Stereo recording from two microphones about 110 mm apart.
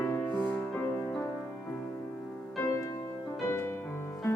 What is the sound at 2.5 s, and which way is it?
Music, 30° left (ahead or behind).